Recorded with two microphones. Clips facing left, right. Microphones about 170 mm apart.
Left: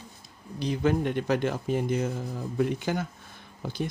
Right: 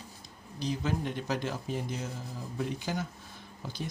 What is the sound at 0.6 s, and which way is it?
Speech, 60° left (ahead or behind).